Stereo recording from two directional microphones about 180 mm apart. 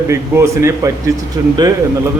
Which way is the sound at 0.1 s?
15° right (ahead or behind).